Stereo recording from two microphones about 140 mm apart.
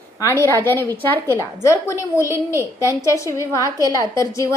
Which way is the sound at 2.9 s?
20° left (ahead or behind).